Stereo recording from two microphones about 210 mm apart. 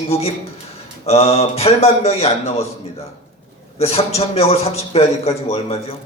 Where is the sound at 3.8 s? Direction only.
30° left (ahead or behind).